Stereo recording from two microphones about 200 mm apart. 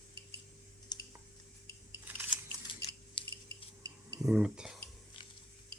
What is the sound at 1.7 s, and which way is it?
Coin, 10° right (ahead or behind).